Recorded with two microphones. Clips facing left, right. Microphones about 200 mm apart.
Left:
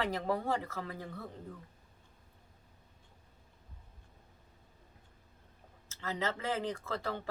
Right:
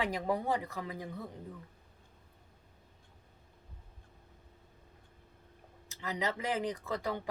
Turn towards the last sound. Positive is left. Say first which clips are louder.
# right 2 dB
turn(degrees=-15)  # may be behind; listen again after turning